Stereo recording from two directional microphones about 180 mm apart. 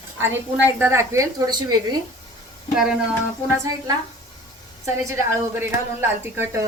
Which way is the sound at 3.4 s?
15° right (ahead or behind).